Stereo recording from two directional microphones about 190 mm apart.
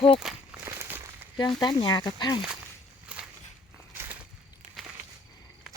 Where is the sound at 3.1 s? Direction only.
5° right (ahead or behind).